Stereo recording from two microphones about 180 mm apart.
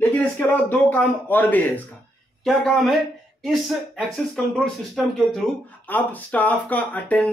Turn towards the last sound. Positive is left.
turn(degrees=10)  # may be behind; listen again after turning